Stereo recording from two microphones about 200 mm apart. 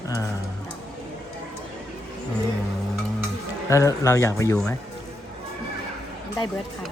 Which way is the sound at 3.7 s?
15° left (ahead or behind).